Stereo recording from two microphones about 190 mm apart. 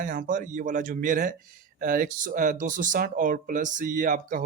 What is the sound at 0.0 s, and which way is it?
Speech, 45° right (ahead or behind).